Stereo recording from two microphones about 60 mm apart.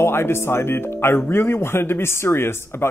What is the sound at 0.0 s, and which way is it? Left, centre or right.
Speech, left.